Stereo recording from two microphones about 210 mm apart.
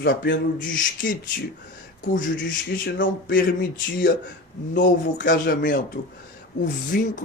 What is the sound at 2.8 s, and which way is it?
Speech, 50° left (ahead or behind).